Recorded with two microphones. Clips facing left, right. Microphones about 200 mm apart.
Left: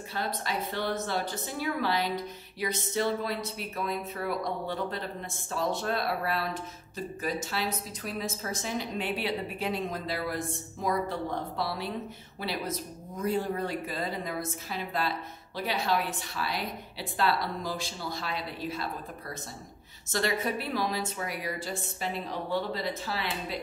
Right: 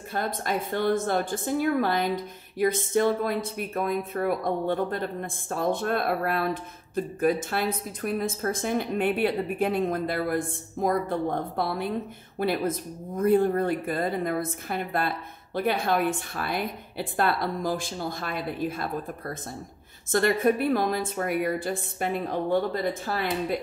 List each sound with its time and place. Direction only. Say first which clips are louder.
0.1 s a woman's voice: right 5 dB; 50° right (ahead or behind)